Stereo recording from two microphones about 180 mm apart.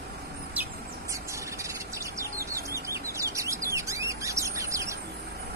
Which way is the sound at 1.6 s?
15° right (ahead or behind).